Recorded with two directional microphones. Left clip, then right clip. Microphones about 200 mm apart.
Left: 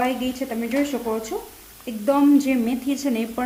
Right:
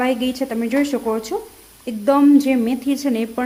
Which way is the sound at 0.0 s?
40° right (ahead or behind).